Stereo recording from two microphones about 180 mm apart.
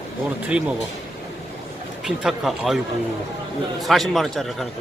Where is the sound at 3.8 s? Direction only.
Centre (ahead or behind).